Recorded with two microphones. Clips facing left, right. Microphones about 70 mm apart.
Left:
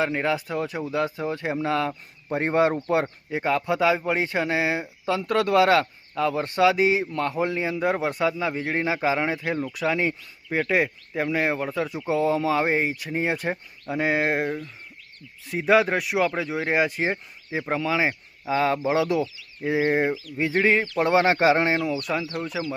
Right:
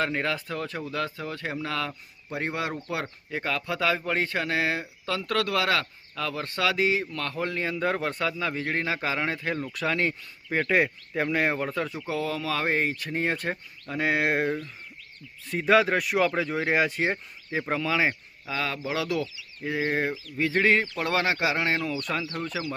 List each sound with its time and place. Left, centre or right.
0.0 s speech: centre; by 2.7 s left
3.2 s speech: centre
11.9 s speech: left; by 18.2 s centre
18.4 s speech: left
20.5 s speech: centre
20.9 s speech: left
21.7 s speech: centre